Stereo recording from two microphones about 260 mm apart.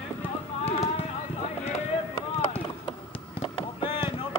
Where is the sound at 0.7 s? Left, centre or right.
Left.